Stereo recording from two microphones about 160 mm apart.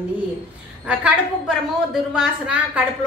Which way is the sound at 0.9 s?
5° right (ahead or behind).